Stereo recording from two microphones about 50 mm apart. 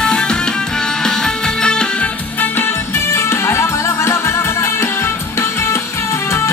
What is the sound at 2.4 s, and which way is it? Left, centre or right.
Music, left.